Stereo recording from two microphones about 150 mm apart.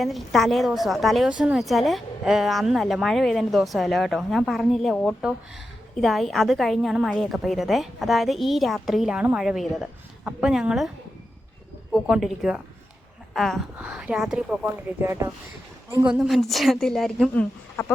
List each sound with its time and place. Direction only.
0.0 s a woman's voice: centre (ahead or behind)
12.0 s a woman's voice: 5° right (ahead or behind)
16.0 s a woman's voice: 5° right (ahead or behind)
17.3 s speech: 10° left (ahead or behind)